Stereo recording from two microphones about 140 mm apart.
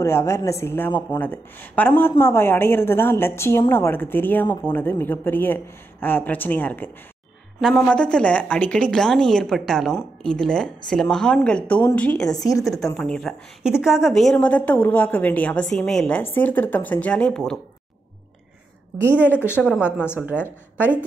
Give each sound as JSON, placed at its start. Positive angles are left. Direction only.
{"t": 0.0, "sound": "a woman's voice", "side_deg": 20}
{"t": 12.3, "sound": "a woman's voice", "side_deg": 25}
{"t": 12.9, "sound": "a woman's voice", "side_deg": 5}
{"t": 19.0, "sound": "a woman's voice", "side_deg": 10}